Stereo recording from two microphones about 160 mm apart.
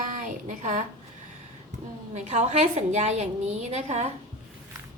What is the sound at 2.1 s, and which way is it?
A woman's voice, 45° right (ahead or behind).